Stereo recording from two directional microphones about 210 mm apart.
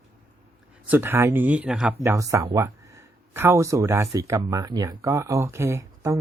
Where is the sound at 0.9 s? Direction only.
10° right (ahead or behind).